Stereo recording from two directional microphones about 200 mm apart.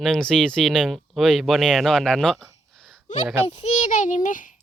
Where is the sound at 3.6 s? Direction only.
35° left (ahead or behind).